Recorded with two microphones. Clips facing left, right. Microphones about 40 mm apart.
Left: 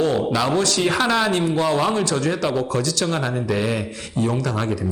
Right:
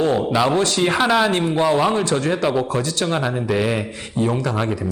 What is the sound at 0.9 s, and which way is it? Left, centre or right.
Speech, centre.